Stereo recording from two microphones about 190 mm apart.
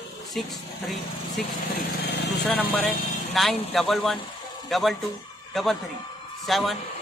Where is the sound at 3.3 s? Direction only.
Centre (ahead or behind).